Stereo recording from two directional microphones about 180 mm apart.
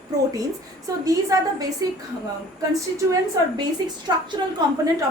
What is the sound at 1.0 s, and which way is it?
Speech, 20° right (ahead or behind).